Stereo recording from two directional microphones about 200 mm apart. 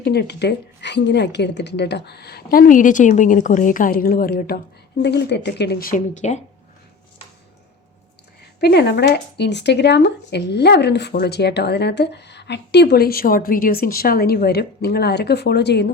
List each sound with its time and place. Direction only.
0.0 s a woman's voice: 55° left (ahead or behind)
5.0 s speech: 60° left (ahead or behind); by 6.4 s 35° left (ahead or behind)
8.6 s speech: 55° left (ahead or behind)